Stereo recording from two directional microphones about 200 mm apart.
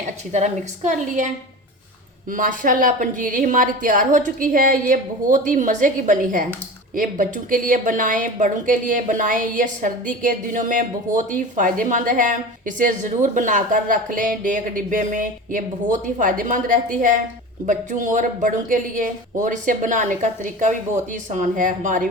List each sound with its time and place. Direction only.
0.3 s speech: 35° right (ahead or behind)
2.3 s speech: 40° right (ahead or behind)